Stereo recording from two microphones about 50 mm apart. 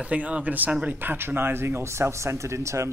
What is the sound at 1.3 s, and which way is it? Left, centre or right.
Speech, right.